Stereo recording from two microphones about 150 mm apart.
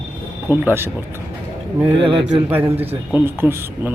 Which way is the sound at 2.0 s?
35° right (ahead or behind).